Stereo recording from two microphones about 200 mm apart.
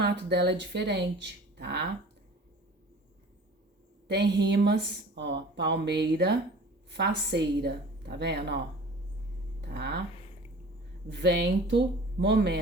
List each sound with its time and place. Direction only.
0.0 s speech: 55° right (ahead or behind)
4.1 s speech: 60° right (ahead or behind)
9.6 s speech: 60° right (ahead or behind)
11.1 s speech: 60° right (ahead or behind)